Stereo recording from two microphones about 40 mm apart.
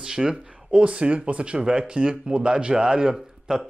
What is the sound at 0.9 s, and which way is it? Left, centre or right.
Speech, right.